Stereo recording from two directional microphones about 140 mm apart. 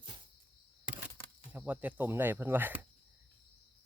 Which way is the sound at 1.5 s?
10° right (ahead or behind).